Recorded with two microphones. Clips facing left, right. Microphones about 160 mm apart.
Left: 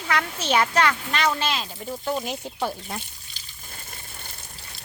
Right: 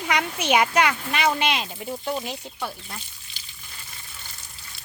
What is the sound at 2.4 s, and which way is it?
Speech, 25° left (ahead or behind).